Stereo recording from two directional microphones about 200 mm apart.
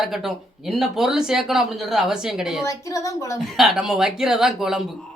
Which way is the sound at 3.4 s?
Centre (ahead or behind).